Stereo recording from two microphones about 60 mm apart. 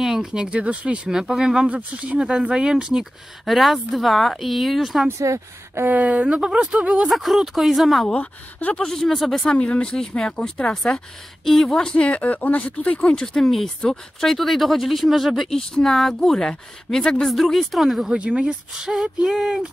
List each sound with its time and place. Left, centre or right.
0.0 s speech: centre
1.7 s speech: right
3.4 s speech: centre
5.2 s speech: right
5.9 s speech: right
7.1 s speech: centre
8.1 s speech: left
8.7 s speech: centre
9.5 s speech: centre
10.7 s speech: centre
11.9 s speech: left
13.4 s speech: centre
18.1 s speech: centre